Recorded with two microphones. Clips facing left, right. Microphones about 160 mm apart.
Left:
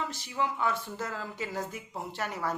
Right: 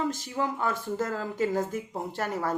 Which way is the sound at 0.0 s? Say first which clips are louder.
Right 4 dB; 45° right (ahead or behind).